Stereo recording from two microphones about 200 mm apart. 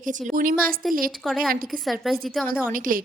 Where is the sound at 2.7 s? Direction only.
45° right (ahead or behind).